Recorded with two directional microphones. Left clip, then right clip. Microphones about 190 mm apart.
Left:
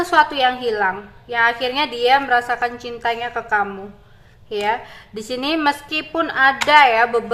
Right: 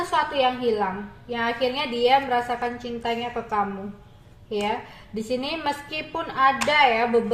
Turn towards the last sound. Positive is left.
turn(degrees=15)  # may be behind; listen again after turning